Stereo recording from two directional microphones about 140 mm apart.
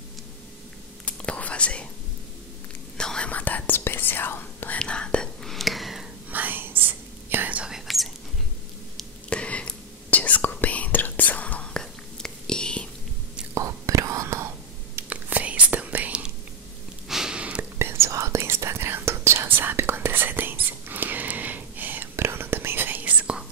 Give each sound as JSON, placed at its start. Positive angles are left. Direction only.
{"t": 1.0, "sound": "whispering", "side_deg": 10}
{"t": 3.0, "sound": "whispering", "side_deg": 5}
{"t": 6.3, "sound": "whispering", "side_deg": -15}
{"t": 13.6, "sound": "whispering", "side_deg": -20}